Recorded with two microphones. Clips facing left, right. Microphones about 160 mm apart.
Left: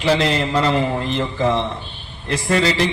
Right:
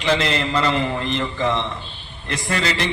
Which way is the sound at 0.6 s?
30° left (ahead or behind).